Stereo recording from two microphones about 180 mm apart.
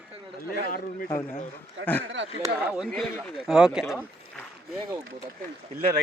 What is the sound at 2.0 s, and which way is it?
Speech, 90° right.